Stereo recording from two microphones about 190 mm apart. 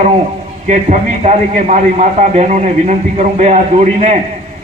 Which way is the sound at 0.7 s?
40° right (ahead or behind).